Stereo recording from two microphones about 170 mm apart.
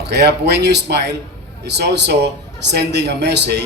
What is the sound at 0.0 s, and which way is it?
A man's voice, 80° right.